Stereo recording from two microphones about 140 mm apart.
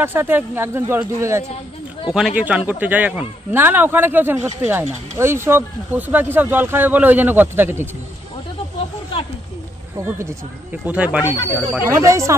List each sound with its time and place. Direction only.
0.0 s speech: 15° right (ahead or behind)
2.1 s speech: 5° right (ahead or behind)
10.0 s speech: 15° right (ahead or behind)
11.9 s speech: 20° right (ahead or behind)